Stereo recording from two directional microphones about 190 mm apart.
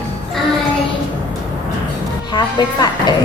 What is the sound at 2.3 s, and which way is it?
Speech, 20° left (ahead or behind).